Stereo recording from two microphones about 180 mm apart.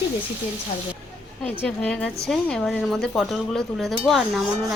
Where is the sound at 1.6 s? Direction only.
5° left (ahead or behind).